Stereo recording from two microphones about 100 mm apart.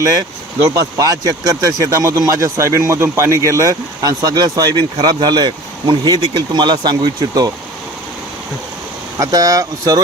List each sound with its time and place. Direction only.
0.0 s speech: 35° right (ahead or behind)
9.1 s speech: 35° right (ahead or behind)